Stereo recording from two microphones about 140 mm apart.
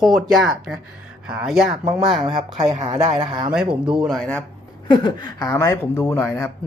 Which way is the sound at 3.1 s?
40° right (ahead or behind).